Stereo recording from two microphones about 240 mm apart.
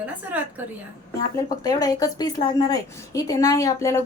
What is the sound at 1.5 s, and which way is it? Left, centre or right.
A woman's voice, centre.